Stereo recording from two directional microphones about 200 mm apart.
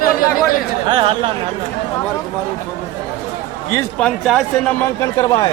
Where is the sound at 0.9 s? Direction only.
25° right (ahead or behind).